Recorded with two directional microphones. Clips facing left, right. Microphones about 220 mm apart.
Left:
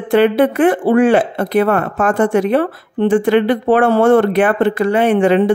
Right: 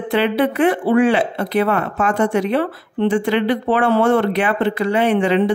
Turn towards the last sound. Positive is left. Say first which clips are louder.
# left 4 dB
turn(degrees=50)  # may be behind; listen again after turning